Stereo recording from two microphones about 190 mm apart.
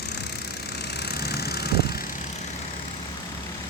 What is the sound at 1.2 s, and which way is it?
Vehicle, 55° left (ahead or behind).